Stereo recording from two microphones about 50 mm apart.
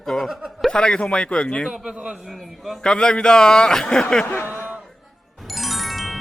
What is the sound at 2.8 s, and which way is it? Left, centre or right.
A man's voice, centre.